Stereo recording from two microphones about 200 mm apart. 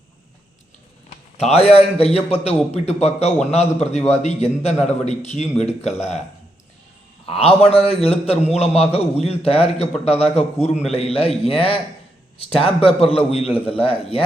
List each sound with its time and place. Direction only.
1.5 s a man's voice: 30° left (ahead or behind)
7.3 s a man's voice: 30° left (ahead or behind)